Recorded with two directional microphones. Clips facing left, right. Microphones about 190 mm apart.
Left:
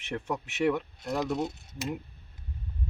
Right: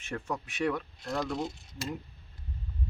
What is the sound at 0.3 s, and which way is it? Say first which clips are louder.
Speech: left 4 dB; 20° left (ahead or behind).